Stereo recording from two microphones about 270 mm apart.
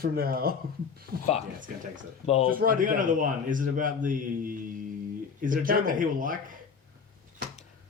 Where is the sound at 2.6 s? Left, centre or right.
Right.